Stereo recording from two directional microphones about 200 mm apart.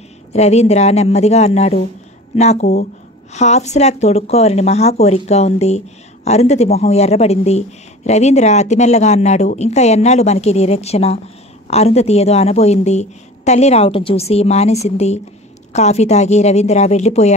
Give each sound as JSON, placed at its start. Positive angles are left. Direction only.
{"t": 0.3, "sound": "speech", "side_deg": 35}